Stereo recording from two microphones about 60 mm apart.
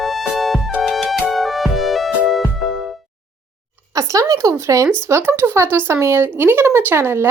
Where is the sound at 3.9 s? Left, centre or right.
Right.